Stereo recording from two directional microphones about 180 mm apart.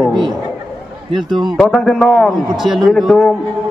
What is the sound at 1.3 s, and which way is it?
Speech, 25° right (ahead or behind).